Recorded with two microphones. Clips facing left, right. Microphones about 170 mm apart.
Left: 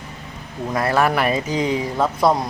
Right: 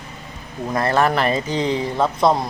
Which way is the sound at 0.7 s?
10° left (ahead or behind).